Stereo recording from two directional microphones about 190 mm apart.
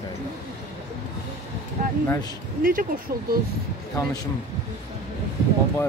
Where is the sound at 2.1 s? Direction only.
20° left (ahead or behind).